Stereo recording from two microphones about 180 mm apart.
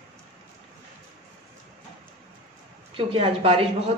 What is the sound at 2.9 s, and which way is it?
Speech, 30° right (ahead or behind).